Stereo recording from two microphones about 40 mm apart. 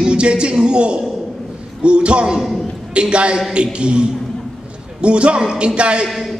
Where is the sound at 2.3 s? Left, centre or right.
Centre.